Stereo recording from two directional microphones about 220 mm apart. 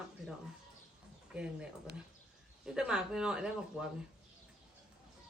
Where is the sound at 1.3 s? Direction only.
5° right (ahead or behind).